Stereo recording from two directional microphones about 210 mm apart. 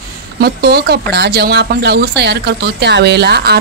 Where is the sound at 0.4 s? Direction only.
50° right (ahead or behind).